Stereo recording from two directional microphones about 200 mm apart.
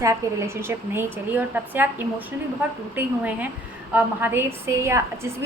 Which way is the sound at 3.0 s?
10° right (ahead or behind).